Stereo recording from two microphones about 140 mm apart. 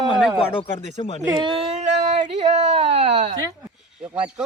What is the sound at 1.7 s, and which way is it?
Speech, 55° right (ahead or behind).